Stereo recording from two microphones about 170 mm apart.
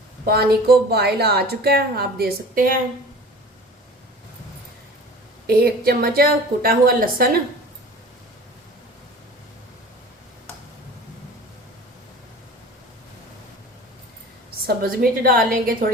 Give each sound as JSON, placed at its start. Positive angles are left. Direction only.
{"t": 0.3, "sound": "a woman's voice", "side_deg": -65}
{"t": 5.5, "sound": "a woman's voice", "side_deg": -60}
{"t": 14.8, "sound": "a woman's voice", "side_deg": -60}